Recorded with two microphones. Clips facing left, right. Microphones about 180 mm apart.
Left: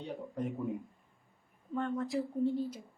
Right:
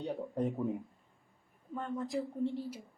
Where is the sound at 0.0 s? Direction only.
40° right (ahead or behind).